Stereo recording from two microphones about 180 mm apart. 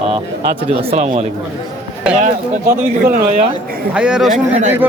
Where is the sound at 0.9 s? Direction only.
35° right (ahead or behind).